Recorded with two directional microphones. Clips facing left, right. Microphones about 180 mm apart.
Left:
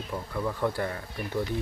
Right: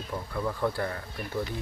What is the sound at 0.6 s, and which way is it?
Speech, 15° left (ahead or behind).